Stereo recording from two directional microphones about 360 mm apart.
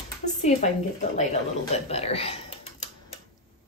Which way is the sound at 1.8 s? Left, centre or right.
Centre.